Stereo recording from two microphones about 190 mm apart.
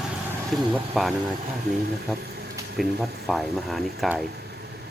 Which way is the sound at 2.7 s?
Centre (ahead or behind).